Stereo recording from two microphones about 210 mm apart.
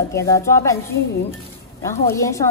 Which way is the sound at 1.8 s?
15° left (ahead or behind).